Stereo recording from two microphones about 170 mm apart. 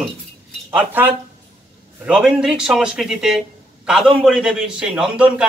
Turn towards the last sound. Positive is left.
turn(degrees=-5)  # may be behind; listen again after turning